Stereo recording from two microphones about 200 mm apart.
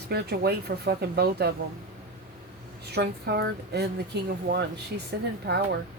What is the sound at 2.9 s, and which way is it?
Speech, 55° right (ahead or behind).